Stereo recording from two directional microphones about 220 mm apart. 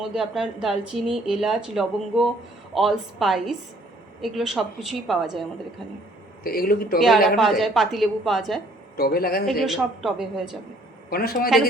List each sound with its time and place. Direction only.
0.0 s speech: centre (ahead or behind)
6.4 s speech: 40° left (ahead or behind)
7.3 s speech: centre (ahead or behind)
9.0 s speech: 45° left (ahead or behind)
9.5 s speech: centre (ahead or behind)
11.1 s speech: 45° left (ahead or behind)